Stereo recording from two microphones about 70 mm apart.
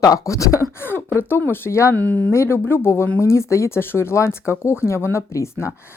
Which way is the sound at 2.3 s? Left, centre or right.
Left.